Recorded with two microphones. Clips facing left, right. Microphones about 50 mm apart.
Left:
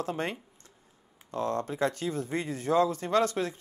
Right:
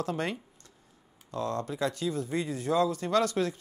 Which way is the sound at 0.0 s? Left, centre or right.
Left.